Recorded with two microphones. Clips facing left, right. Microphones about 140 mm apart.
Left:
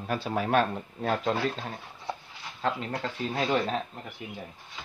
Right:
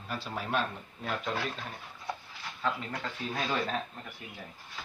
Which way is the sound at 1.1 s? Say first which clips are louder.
Left 6 dB; 35° left (ahead or behind).